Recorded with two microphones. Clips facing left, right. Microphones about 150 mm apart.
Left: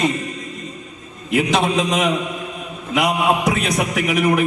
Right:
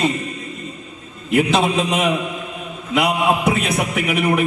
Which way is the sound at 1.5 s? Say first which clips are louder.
Even; 5° right (ahead or behind).